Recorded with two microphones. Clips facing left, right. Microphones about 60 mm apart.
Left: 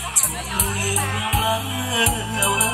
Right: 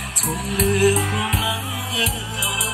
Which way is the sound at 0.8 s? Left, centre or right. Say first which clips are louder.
Right 7 dB; right.